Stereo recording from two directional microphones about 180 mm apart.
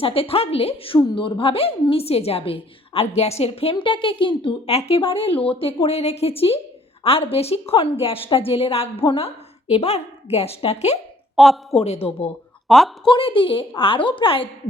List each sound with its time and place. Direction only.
0.0 s a woman's voice: 30° left (ahead or behind)
11.3 s speech: centre (ahead or behind)
11.8 s a woman's voice: 35° left (ahead or behind)
12.6 s a woman's voice: centre (ahead or behind)
13.1 s a woman's voice: 30° left (ahead or behind)